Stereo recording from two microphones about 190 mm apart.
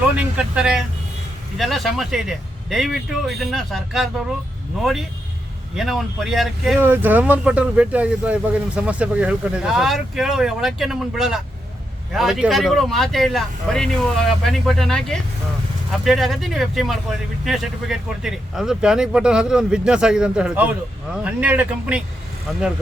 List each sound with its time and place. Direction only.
0.2 s speech: 5° right (ahead or behind)